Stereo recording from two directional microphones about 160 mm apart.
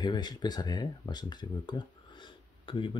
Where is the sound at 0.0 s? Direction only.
25° left (ahead or behind).